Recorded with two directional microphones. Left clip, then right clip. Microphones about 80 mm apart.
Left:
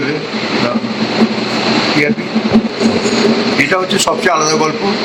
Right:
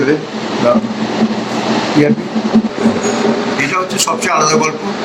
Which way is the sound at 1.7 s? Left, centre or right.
Right.